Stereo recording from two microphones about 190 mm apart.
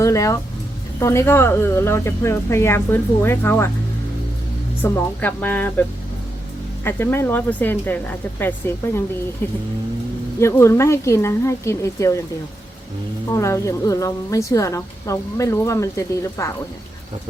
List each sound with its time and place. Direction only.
0.0 s a woman's voice: 15° left (ahead or behind)
4.8 s a woman's voice: 10° left (ahead or behind)
6.8 s a woman's voice: 10° left (ahead or behind)
13.3 s a woman's voice: 15° left (ahead or behind)